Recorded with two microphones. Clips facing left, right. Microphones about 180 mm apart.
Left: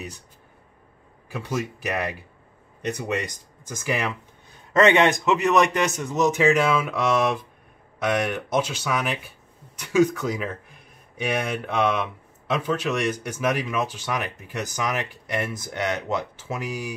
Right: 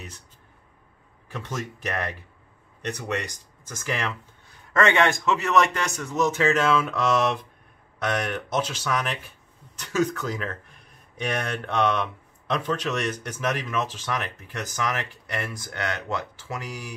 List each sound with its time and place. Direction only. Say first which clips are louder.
1.3 s speech: left 5 dB; 10° left (ahead or behind)
3.7 s speech: left 3 dB; 10° left (ahead or behind)